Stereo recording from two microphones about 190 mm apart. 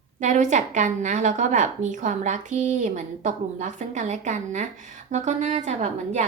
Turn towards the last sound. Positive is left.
turn(degrees=-40)  # may be behind; listen again after turning